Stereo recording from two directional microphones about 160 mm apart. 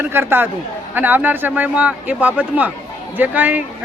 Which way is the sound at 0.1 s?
15° right (ahead or behind).